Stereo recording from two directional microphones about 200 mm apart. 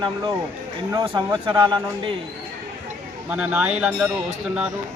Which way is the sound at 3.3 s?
5° right (ahead or behind).